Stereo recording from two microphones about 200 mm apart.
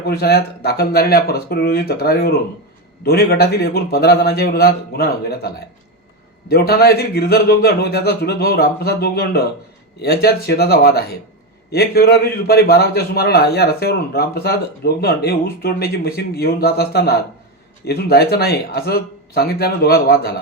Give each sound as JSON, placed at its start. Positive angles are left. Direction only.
{"t": 0.0, "sound": "a man's voice", "side_deg": 50}
{"t": 6.5, "sound": "a man's voice", "side_deg": 50}